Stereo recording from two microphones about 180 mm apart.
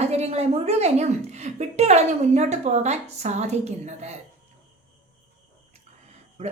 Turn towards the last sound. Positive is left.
turn(degrees=-40)  # may be behind; listen again after turning